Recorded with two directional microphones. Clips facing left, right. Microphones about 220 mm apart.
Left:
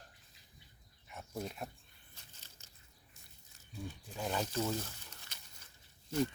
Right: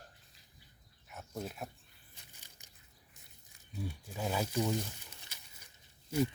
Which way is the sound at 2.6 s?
15° right (ahead or behind).